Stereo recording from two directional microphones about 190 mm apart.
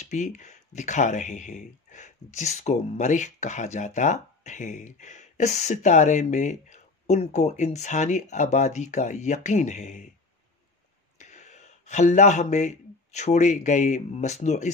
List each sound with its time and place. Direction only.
0.0 s speech: 40° left (ahead or behind)
11.1 s speech: 40° left (ahead or behind)